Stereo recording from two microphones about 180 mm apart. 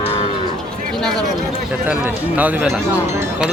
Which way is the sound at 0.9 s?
Centre (ahead or behind).